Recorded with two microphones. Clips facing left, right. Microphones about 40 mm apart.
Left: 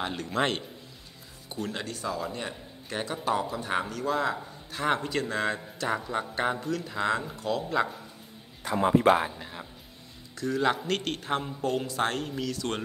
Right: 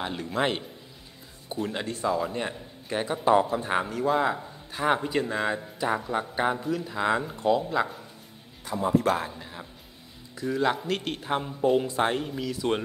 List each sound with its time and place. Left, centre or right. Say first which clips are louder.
0.0 s a man's voice: right 1 dB; centre
1.5 s a man's voice: right 3 dB; centre
7.7 s a man's voice: even; centre
8.6 s speech: left 2 dB; left
8.9 s speech: left 3 dB; left
9.3 s speech: even; centre
10.3 s a man's voice: right 1 dB; centre